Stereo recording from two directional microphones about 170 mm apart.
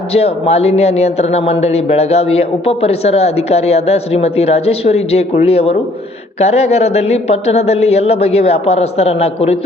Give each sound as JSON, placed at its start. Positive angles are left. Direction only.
{"t": 0.1, "sound": "speech", "side_deg": 35}